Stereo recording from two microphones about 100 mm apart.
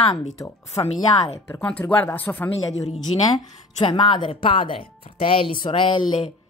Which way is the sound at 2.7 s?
90° left.